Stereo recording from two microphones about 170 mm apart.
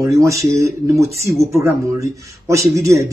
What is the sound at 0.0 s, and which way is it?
Speech, 20° right (ahead or behind).